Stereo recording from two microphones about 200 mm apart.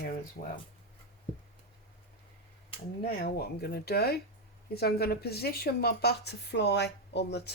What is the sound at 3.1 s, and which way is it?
A woman's voice, 50° left (ahead or behind).